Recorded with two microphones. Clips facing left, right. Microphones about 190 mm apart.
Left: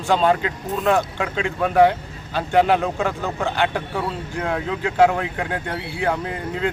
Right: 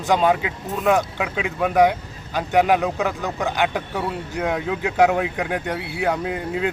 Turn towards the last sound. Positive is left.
turn(degrees=-10)  # may be behind; listen again after turning